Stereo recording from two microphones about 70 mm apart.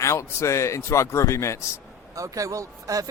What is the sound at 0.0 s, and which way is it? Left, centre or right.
Speech, left.